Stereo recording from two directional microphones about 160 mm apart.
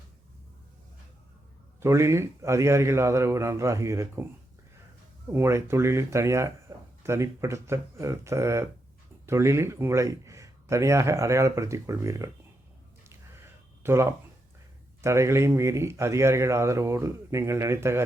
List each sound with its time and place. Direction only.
1.8 s speech: 15° right (ahead or behind)
5.3 s a man's voice: 15° right (ahead or behind)
13.1 s a sound: 15° right (ahead or behind)
15.0 s speech: 15° right (ahead or behind)